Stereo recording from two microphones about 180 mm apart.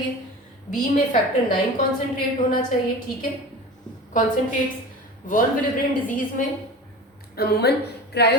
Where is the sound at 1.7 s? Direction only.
50° left (ahead or behind).